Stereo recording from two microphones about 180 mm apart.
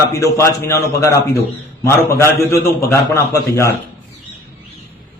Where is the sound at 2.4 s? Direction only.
15° left (ahead or behind).